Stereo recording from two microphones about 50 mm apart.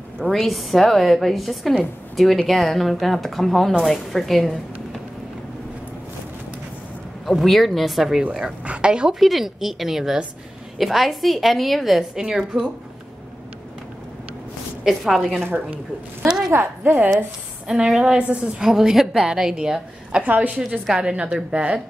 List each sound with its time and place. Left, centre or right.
0.3 s a woman's voice: centre
7.2 s a woman's voice: centre
9.2 s a woman's voice: centre
12.2 s a woman's voice: centre
14.8 s a woman's voice: centre
17.8 s a woman's voice: centre
18.1 s a woman's voice: right
18.6 s a woman's voice: centre
20.2 s a woman's voice: right
20.6 s a woman's voice: centre